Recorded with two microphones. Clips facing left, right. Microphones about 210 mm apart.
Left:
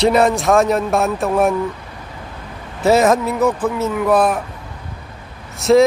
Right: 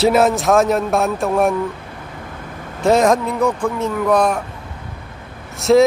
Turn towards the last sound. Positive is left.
turn(degrees=0)  # may be behind; listen again after turning